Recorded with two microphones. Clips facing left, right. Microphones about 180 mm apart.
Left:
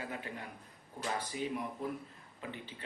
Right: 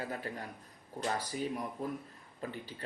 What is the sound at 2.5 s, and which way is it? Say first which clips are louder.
Speech: right 2 dB; 40° right (ahead or behind).